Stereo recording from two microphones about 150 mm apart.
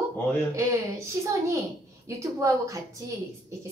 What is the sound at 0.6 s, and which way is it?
A woman's voice, 20° right (ahead or behind).